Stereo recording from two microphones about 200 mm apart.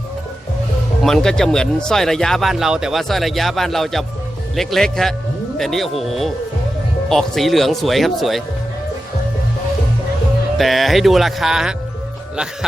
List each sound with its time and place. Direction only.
1.0 s speech: 5° left (ahead or behind)
10.6 s speech: centre (ahead or behind)